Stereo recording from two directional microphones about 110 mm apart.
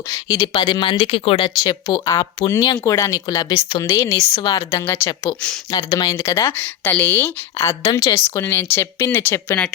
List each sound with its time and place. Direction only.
0.1 s speech: 40° left (ahead or behind); by 1.5 s 60° left (ahead or behind)
1.6 s speech: 35° left (ahead or behind)
2.8 s speech: 30° left (ahead or behind)
6.6 s a woman's voice: 15° left (ahead or behind)
7.9 s speech: 40° left (ahead or behind)
8.1 s speech: 25° left (ahead or behind)